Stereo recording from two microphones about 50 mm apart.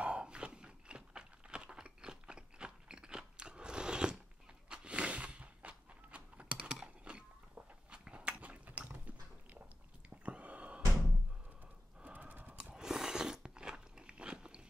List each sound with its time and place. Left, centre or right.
0.0 s a sound: centre
12.0 s horse: right
12.7 s biting: centre